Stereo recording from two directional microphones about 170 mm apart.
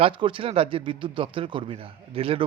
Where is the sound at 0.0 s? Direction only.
30° right (ahead or behind).